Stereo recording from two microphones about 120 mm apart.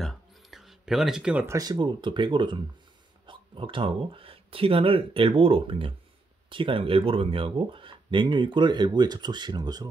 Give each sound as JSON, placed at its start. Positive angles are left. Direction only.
{"t": 0.0, "sound": "a sound", "side_deg": 0}
{"t": 1.4, "sound": "speech", "side_deg": -25}
{"t": 1.7, "sound": "speech", "side_deg": -40}